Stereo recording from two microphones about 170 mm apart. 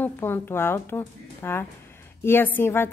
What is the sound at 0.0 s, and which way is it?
A woman's voice, 15° left (ahead or behind).